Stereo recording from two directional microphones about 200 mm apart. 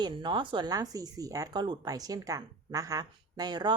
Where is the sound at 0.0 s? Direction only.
25° right (ahead or behind).